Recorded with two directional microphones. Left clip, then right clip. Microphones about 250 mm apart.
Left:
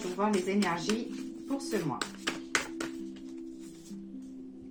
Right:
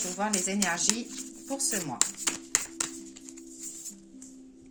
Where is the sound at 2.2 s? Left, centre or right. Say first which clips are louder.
Even; right.